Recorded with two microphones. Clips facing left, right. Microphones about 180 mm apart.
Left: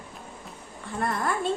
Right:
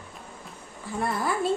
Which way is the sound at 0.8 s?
Centre (ahead or behind).